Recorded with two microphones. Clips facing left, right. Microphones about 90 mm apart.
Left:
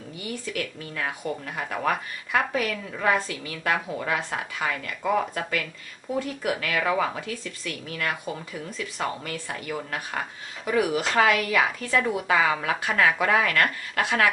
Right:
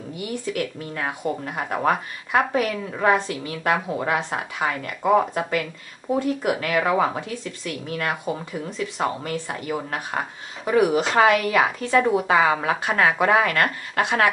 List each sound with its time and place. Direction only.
0.5 s speech: 30° right (ahead or behind)